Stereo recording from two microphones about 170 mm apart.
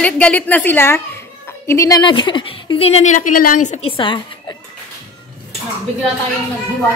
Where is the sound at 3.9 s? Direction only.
30° left (ahead or behind).